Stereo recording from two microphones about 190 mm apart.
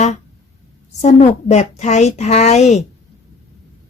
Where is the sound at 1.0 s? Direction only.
35° left (ahead or behind).